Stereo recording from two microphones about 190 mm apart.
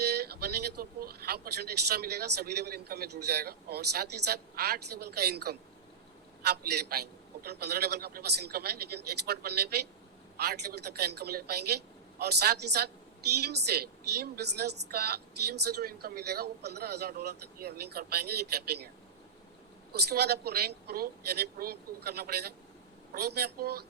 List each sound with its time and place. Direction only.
0.0 s a woman's voice: 60° right (ahead or behind)
19.9 s a woman's voice: 60° right (ahead or behind)